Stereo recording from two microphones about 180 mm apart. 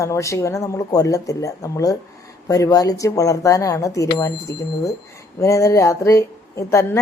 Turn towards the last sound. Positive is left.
turn(degrees=15)  # may be behind; listen again after turning